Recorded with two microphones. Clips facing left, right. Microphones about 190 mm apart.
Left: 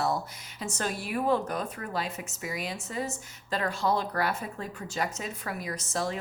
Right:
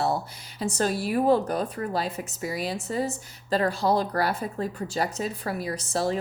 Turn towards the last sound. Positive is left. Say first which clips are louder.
# right 5 dB
turn(degrees=-35)  # may be behind; listen again after turning